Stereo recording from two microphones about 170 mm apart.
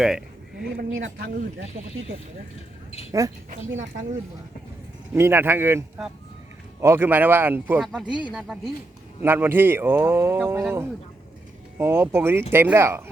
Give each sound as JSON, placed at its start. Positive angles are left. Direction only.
{"t": 0.0, "sound": "a sound", "side_deg": -5}
{"t": 0.8, "sound": "speech", "side_deg": -70}
{"t": 3.1, "sound": "speech", "side_deg": -20}
{"t": 5.1, "sound": "speech", "side_deg": -15}
{"t": 9.2, "sound": "speech", "side_deg": -15}